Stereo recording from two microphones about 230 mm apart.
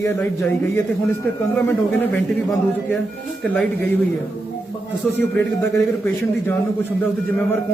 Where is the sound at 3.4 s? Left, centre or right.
Centre.